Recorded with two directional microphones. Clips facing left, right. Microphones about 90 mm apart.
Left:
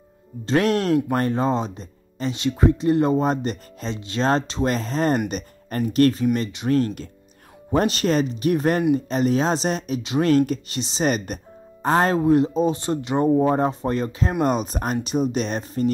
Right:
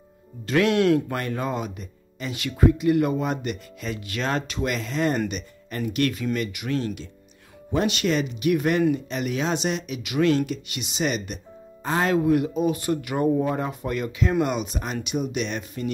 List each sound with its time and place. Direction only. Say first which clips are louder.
0.5 s speech: even; 35° left (ahead or behind)
12.2 s speech: left 3 dB; 30° left (ahead or behind)